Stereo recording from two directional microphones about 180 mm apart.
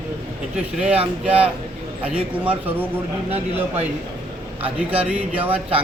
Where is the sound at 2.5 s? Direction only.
10° right (ahead or behind).